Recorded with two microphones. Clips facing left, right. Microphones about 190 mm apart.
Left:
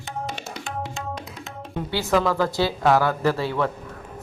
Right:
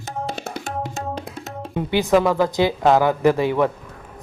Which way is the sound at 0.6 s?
40° right (ahead or behind).